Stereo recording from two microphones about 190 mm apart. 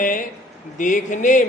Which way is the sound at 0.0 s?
45° left (ahead or behind).